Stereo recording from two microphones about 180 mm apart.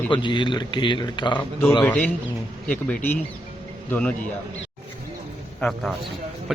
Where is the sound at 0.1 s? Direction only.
25° left (ahead or behind).